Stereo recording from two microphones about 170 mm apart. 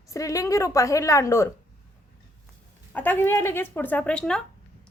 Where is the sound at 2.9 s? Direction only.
10° left (ahead or behind).